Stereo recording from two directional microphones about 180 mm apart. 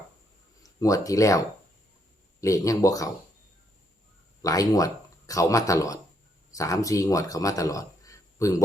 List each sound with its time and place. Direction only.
0.6 s speech: 20° left (ahead or behind)
2.4 s speech: 20° left (ahead or behind)
4.4 s speech: 20° left (ahead or behind)